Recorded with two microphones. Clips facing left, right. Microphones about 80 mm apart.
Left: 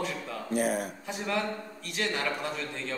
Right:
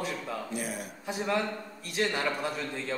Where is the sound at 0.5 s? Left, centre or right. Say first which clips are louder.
Left 13 dB; left.